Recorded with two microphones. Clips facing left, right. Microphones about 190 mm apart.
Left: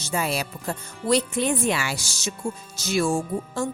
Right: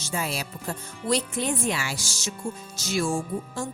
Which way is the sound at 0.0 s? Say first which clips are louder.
Left 4 dB; 65° left (ahead or behind).